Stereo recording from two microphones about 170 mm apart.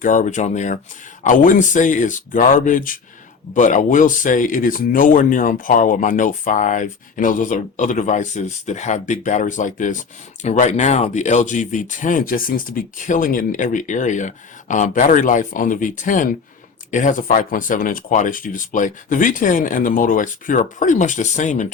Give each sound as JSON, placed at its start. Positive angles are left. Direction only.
{"t": 0.0, "sound": "speech", "side_deg": 45}